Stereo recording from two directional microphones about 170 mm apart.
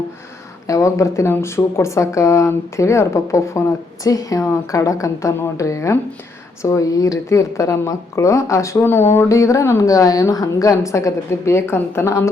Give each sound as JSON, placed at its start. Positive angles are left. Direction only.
{"t": 0.7, "sound": "a woman's voice", "side_deg": 20}